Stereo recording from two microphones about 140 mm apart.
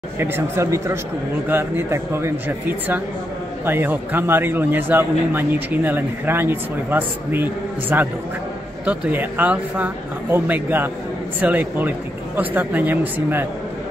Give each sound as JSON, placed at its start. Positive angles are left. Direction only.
{"t": 0.2, "sound": "a man's voice", "side_deg": -20}